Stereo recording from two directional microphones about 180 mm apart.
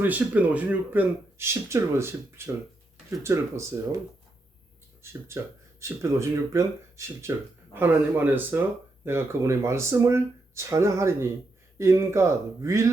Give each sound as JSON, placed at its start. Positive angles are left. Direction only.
{"t": 0.0, "sound": "speech", "side_deg": -10}
{"t": 6.0, "sound": "speech", "side_deg": -15}